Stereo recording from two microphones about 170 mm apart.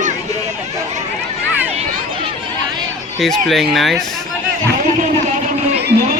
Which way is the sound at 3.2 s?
Centre (ahead or behind).